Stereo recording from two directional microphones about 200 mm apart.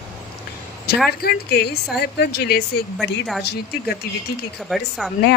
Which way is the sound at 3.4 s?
55° left (ahead or behind).